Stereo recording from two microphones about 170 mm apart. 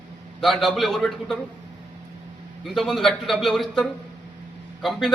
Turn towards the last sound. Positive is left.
turn(degrees=0)  # may be behind; listen again after turning